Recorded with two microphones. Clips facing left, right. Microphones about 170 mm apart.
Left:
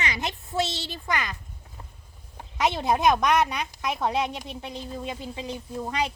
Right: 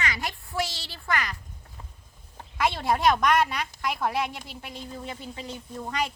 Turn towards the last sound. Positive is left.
turn(degrees=20)  # may be behind; listen again after turning